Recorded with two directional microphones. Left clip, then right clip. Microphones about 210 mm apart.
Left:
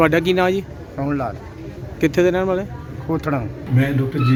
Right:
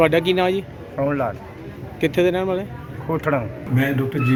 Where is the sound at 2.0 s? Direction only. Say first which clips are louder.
Left 2 dB; 5° left (ahead or behind).